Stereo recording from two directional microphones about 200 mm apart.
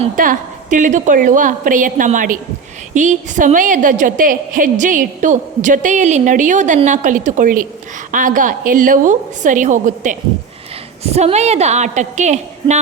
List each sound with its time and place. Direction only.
0.0 s a woman's voice: 40° right (ahead or behind)